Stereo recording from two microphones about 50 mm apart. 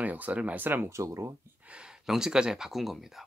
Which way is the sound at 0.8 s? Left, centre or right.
Right.